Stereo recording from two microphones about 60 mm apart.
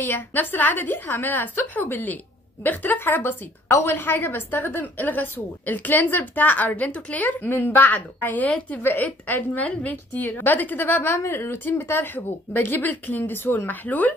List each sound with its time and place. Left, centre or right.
0.0 s a woman's voice: left
11.1 s a woman's voice: left